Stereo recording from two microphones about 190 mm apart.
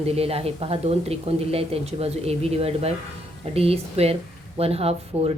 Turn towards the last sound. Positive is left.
turn(degrees=-30)  # may be behind; listen again after turning